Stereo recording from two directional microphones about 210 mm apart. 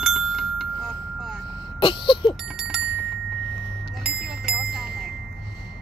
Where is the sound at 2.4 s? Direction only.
Centre (ahead or behind).